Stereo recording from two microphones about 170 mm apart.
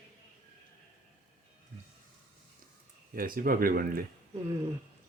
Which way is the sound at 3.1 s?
55° right (ahead or behind).